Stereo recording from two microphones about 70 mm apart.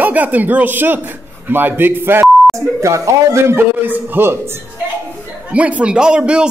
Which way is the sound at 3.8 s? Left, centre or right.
Right.